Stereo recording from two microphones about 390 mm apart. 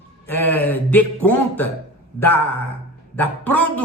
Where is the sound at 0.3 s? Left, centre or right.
Centre.